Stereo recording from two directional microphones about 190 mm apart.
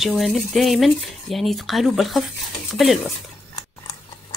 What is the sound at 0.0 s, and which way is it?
Speech, centre (ahead or behind).